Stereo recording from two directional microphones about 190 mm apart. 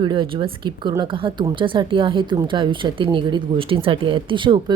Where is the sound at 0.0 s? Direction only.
25° right (ahead or behind).